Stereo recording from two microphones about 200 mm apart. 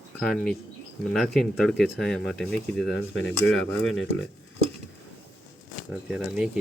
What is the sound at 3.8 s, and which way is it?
Speech, 85° left.